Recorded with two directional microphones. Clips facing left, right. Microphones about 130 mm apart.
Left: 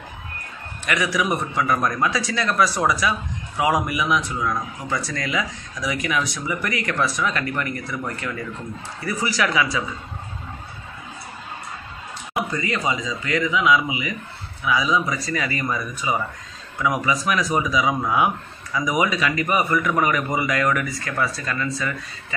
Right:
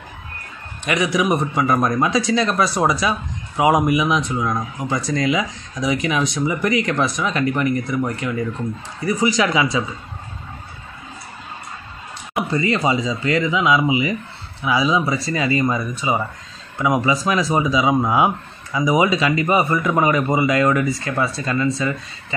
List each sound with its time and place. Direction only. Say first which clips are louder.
0.8 s a man's voice: right 4 dB; 20° right (ahead or behind)
12.4 s a man's voice: right 5 dB; 30° right (ahead or behind)